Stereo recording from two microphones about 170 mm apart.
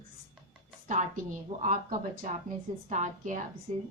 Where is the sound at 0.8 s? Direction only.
45° right (ahead or behind).